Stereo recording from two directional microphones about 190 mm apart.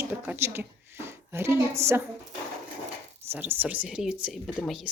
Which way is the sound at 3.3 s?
10° right (ahead or behind).